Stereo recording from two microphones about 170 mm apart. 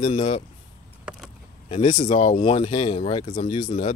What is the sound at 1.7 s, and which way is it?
Speech, 30° left (ahead or behind).